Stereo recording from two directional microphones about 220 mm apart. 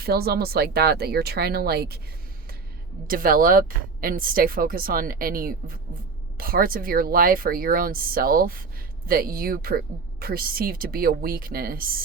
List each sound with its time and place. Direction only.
0.0 s speech: 45° right (ahead or behind)
3.1 s speech: 40° right (ahead or behind)